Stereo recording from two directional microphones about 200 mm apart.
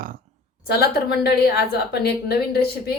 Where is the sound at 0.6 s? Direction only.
50° left (ahead or behind).